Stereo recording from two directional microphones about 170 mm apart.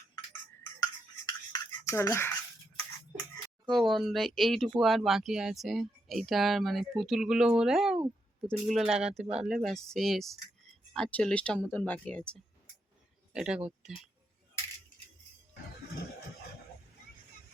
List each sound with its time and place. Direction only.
1.8 s speech: 15° left (ahead or behind)
3.7 s speech: centre (ahead or behind)